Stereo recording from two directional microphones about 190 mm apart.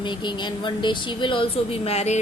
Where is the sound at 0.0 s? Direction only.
25° left (ahead or behind).